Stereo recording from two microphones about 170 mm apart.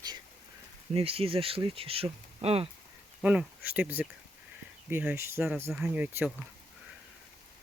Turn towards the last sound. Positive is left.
turn(degrees=-10)  # may be behind; listen again after turning